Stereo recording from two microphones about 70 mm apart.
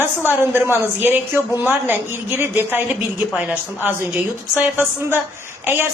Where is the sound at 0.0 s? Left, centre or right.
Right.